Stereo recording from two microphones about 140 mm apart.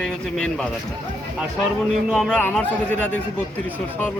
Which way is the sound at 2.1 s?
5° left (ahead or behind).